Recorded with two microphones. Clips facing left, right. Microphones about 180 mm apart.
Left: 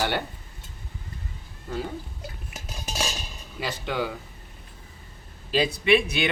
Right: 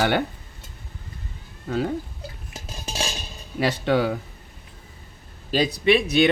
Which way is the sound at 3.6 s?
70° right (ahead or behind).